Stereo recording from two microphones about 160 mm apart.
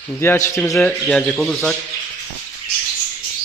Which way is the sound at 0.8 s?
5° left (ahead or behind).